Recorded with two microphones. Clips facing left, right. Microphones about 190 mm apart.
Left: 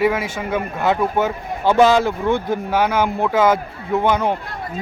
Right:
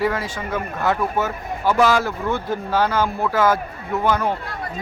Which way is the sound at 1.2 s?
25° left (ahead or behind).